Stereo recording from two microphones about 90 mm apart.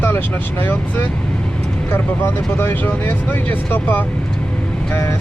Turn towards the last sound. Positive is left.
turn(degrees=20)  # may be behind; listen again after turning